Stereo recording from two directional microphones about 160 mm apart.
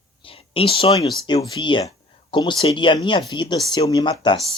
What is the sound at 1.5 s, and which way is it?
Speech, 30° left (ahead or behind).